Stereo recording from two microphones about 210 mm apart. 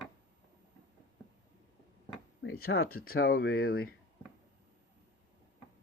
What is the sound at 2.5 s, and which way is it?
Speech, 45° left (ahead or behind).